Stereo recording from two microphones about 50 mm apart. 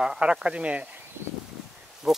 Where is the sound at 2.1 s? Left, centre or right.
Centre.